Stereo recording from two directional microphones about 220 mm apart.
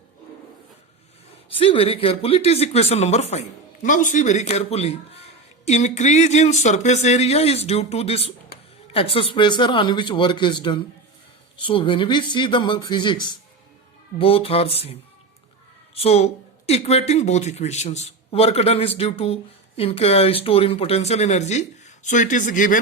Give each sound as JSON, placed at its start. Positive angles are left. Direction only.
{"t": 1.5, "sound": "speech", "side_deg": 25}
{"t": 16.0, "sound": "speech", "side_deg": 30}